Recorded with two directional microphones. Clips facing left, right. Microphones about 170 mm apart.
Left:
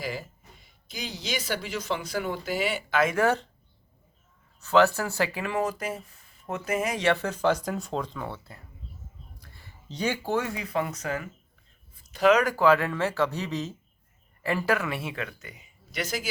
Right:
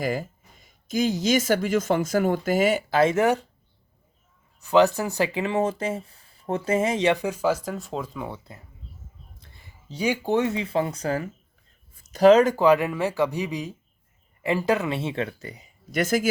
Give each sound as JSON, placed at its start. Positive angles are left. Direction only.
{"t": 0.0, "sound": "speech", "side_deg": -50}
{"t": 3.0, "sound": "speech", "side_deg": -25}
{"t": 4.6, "sound": "speech", "side_deg": -15}
{"t": 9.4, "sound": "a sound", "side_deg": -20}
{"t": 9.9, "sound": "speech", "side_deg": -10}